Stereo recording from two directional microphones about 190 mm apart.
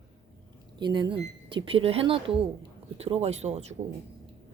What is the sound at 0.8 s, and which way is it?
Speech, 25° right (ahead or behind).